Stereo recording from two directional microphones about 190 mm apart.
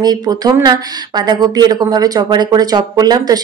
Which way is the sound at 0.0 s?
20° right (ahead or behind).